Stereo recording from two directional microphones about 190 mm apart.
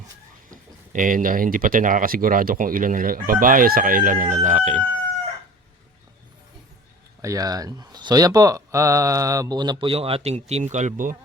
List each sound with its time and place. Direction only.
0.5 s speech: 45° right (ahead or behind)
7.2 s speech: 15° right (ahead or behind); by 11.2 s 45° right (ahead or behind)